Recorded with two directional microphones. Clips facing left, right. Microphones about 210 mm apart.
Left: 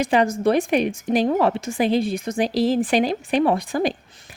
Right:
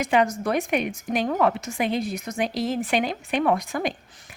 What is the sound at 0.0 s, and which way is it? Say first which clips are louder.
A woman's voice: left 4 dB; 35° left (ahead or behind).